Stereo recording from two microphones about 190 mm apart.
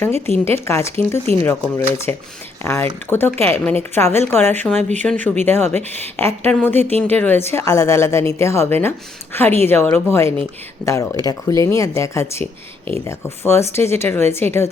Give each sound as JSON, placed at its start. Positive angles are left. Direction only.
{"t": 0.3, "sound": "speech", "side_deg": 10}